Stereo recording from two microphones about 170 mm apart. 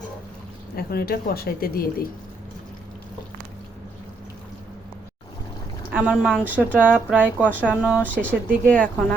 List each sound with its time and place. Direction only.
0.8 s speech: 65° left (ahead or behind)
5.9 s speech: 10° right (ahead or behind)
8.6 s speech: 5° left (ahead or behind)